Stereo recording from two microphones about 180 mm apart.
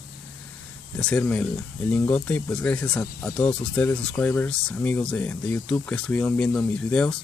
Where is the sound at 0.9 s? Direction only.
5° left (ahead or behind).